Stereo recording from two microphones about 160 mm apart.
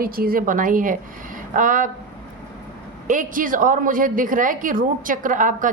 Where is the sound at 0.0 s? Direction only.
65° right (ahead or behind).